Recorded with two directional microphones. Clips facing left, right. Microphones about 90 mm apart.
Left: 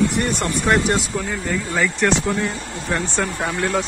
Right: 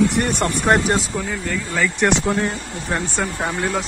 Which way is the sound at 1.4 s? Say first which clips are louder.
Left 1 dB; 10° left (ahead or behind).